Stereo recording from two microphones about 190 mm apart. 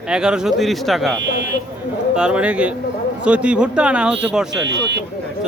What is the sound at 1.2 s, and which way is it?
Speech, 65° right (ahead or behind).